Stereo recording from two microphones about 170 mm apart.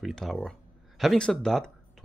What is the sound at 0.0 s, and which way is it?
Speech, centre (ahead or behind).